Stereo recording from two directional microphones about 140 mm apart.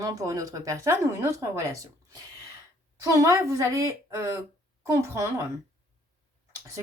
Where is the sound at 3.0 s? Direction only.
25° right (ahead or behind).